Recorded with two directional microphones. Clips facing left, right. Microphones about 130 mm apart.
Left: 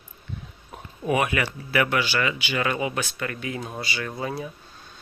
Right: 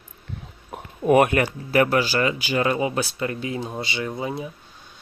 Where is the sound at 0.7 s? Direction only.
50° right (ahead or behind).